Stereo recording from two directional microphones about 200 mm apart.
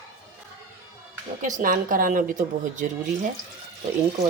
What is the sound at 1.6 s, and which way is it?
Speech, 40° right (ahead or behind).